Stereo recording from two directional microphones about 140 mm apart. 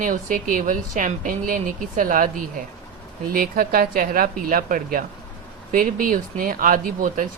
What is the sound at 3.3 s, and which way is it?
Speech, 90° right.